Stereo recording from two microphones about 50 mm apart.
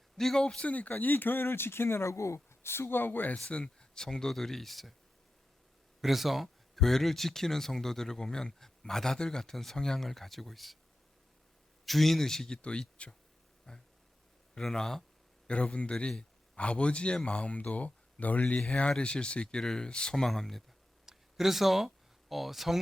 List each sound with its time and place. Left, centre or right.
0.2 s speech: centre
0.4 s speech: centre
0.7 s speech: left
3.5 s speech: centre
6.0 s speech: centre
11.9 s a man's voice: centre
13.0 s a man's voice: left; by 15.0 s centre
15.4 s a man's voice: left; by 20.7 s centre
21.1 s a sound: centre